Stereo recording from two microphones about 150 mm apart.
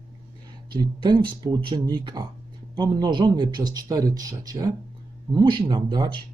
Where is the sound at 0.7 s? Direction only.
30° right (ahead or behind).